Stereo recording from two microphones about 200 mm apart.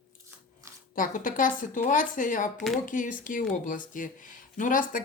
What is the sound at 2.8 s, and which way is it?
Speech, 40° left (ahead or behind).